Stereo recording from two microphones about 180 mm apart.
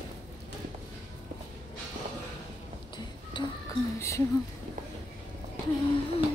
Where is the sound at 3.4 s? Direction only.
25° left (ahead or behind).